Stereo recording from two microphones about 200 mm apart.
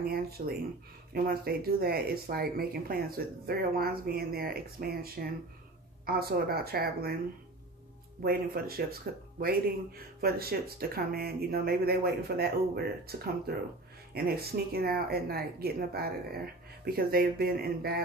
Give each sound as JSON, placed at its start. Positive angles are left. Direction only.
{"t": 0.4, "sound": "speech", "side_deg": -40}
{"t": 8.2, "sound": "speech", "side_deg": -50}